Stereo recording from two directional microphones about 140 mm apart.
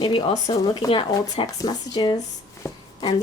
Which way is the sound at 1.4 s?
25° left (ahead or behind).